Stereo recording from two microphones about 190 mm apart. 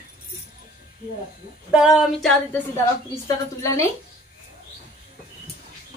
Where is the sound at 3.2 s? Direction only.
15° left (ahead or behind).